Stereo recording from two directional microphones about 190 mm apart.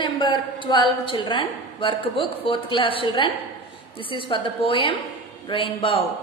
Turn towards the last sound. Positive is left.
turn(degrees=30)  # may be behind; listen again after turning